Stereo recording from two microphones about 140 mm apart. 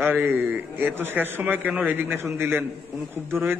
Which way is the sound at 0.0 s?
15° right (ahead or behind).